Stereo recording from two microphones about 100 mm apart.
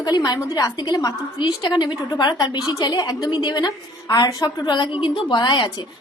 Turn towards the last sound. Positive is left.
turn(degrees=50)  # may be behind; listen again after turning